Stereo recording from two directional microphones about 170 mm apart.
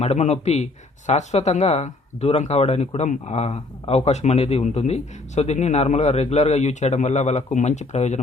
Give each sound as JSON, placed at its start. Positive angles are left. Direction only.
{"t": 0.0, "sound": "speech", "side_deg": 40}